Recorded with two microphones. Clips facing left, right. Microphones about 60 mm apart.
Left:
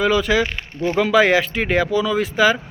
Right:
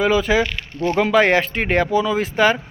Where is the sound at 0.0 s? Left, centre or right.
Centre.